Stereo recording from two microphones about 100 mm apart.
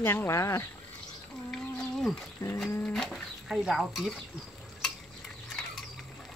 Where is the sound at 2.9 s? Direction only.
5° left (ahead or behind).